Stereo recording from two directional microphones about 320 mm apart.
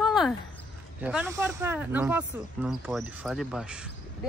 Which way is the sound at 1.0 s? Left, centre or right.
Centre.